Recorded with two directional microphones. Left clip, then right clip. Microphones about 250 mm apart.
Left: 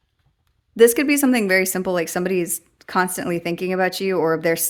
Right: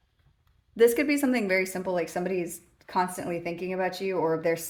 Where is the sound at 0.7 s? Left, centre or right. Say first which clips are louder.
Left 7 dB; left.